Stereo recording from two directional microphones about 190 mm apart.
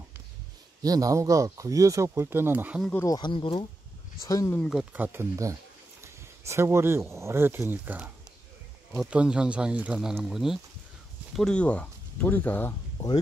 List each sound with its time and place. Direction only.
0.8 s speech: 20° right (ahead or behind)
2.9 s speech: 15° left (ahead or behind)
4.2 s speech: 15° left (ahead or behind)
4.6 s speech: 5° right (ahead or behind); by 12.7 s 10° left (ahead or behind)